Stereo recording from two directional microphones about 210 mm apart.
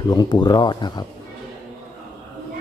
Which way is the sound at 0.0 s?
20° left (ahead or behind).